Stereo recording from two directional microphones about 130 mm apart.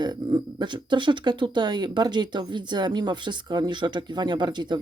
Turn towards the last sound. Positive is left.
turn(degrees=-35)  # may be behind; listen again after turning